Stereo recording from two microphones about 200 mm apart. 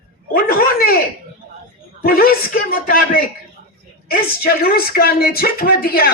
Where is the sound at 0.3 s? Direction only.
50° left (ahead or behind).